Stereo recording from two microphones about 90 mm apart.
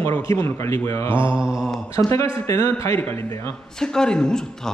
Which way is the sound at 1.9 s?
35° left (ahead or behind).